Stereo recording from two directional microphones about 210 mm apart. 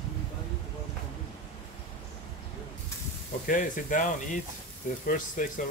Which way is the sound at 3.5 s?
40° left (ahead or behind).